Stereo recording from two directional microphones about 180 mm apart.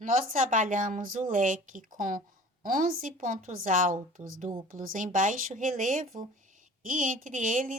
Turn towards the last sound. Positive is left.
turn(degrees=-45)  # may be behind; listen again after turning